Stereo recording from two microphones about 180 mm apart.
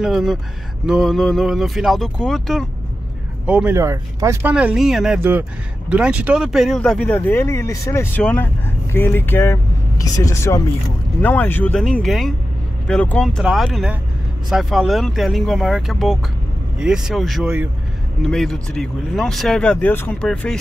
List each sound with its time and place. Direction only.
0.0 s speech: centre (ahead or behind)